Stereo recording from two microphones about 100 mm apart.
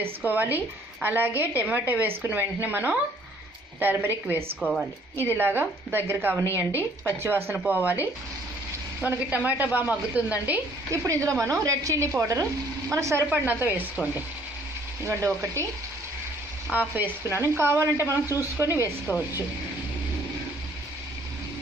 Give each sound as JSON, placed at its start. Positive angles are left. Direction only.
{"t": 0.0, "sound": "a woman's voice", "side_deg": -20}
{"t": 4.6, "sound": "a woman's voice", "side_deg": 0}
{"t": 5.2, "sound": "a woman's voice", "side_deg": -20}
{"t": 6.7, "sound": "a woman's voice", "side_deg": 25}
{"t": 7.2, "sound": "speech", "side_deg": -25}
{"t": 11.1, "sound": "a woman's voice", "side_deg": -30}
{"t": 13.3, "sound": "a woman's voice", "side_deg": -20}
{"t": 16.7, "sound": "a woman's voice", "side_deg": -20}
{"t": 19.1, "sound": "a woman's voice", "side_deg": 20}